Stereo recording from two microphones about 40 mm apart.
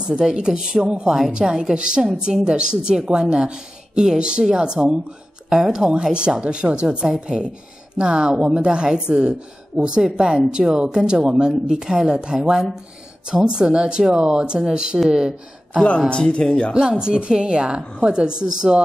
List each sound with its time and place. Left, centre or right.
0.0 s a woman's voice: right
16.1 s speech: left
16.7 s a woman's voice: right